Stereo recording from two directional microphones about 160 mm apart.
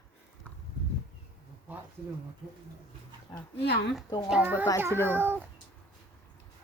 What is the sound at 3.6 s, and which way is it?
Speech, 90° left.